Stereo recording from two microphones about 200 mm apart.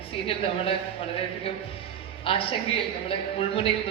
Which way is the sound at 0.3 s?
30° left (ahead or behind).